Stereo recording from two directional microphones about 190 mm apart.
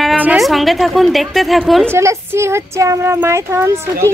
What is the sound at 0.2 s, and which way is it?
A woman's voice, 5° right (ahead or behind).